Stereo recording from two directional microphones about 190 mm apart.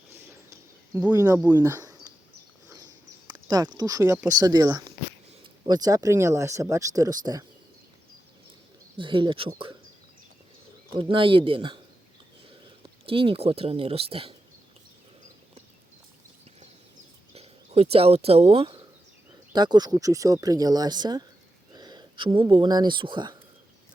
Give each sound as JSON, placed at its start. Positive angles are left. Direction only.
{"t": 1.1, "sound": "speech", "side_deg": -15}
{"t": 3.3, "sound": "speech", "side_deg": -20}
{"t": 9.0, "sound": "speech", "side_deg": -25}
{"t": 10.9, "sound": "speech", "side_deg": -25}
{"t": 12.8, "sound": "speech", "side_deg": -30}
{"t": 17.9, "sound": "speech", "side_deg": -30}